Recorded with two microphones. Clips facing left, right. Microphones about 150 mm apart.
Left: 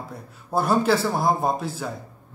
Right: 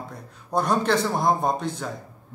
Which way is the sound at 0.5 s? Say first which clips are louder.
Left 2 dB; 5° left (ahead or behind).